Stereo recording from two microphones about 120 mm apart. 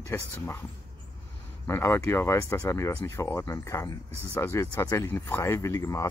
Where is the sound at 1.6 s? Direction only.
20° left (ahead or behind).